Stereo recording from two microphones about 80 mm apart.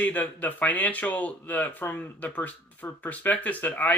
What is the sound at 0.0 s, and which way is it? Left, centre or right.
Speech, centre.